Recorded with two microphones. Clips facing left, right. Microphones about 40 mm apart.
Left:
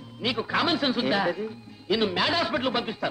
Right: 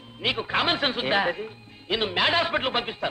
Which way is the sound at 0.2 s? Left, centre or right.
Right.